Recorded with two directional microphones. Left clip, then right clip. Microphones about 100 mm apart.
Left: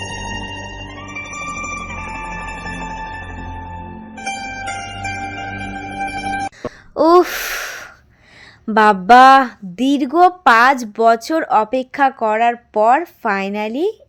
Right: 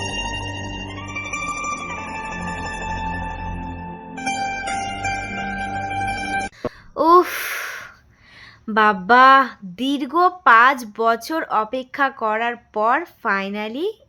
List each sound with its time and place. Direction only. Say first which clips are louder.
0.0 s music: even; centre (ahead or behind)
6.9 s gasp: left 2 dB; 30° left (ahead or behind)
8.7 s a woman's voice: left 5 dB; 35° left (ahead or behind)